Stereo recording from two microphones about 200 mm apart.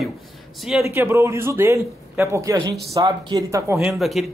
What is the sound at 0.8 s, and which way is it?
A man's voice, 15° right (ahead or behind).